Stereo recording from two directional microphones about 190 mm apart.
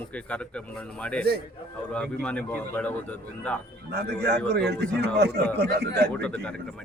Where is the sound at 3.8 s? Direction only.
60° right (ahead or behind).